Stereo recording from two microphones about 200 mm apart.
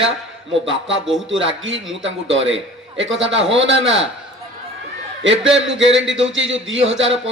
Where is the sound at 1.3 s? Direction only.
70° right (ahead or behind).